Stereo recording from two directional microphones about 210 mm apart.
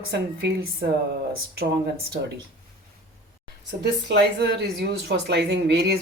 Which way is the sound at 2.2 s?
45° right (ahead or behind).